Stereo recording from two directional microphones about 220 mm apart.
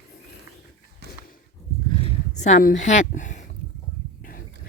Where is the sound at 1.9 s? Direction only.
30° left (ahead or behind).